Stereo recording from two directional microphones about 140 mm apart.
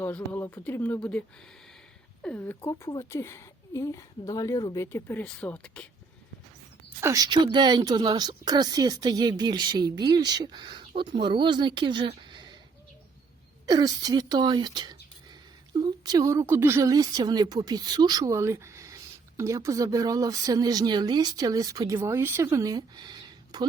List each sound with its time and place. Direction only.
0.0 s speech: 15° left (ahead or behind)
2.2 s speech: 10° left (ahead or behind)
7.0 s speech: 25° right (ahead or behind)
13.7 s speech: 30° right (ahead or behind)